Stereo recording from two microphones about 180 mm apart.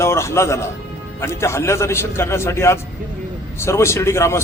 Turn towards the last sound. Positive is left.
turn(degrees=15)  # may be behind; listen again after turning